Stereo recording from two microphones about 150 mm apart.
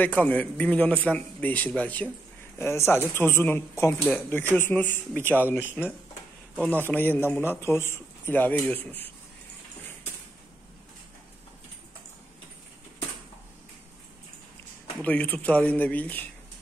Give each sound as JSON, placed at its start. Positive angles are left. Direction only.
{"t": 0.0, "sound": "a man's voice", "side_deg": 10}
{"t": 6.5, "sound": "speech", "side_deg": 0}
{"t": 6.8, "sound": "a man's voice", "side_deg": 15}
{"t": 15.0, "sound": "a man's voice", "side_deg": 10}